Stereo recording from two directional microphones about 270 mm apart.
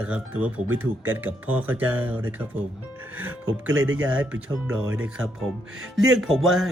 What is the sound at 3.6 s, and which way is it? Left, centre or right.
Speech, centre.